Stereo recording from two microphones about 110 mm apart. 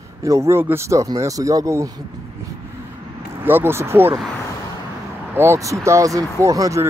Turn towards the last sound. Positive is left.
turn(degrees=-30)  # may be behind; listen again after turning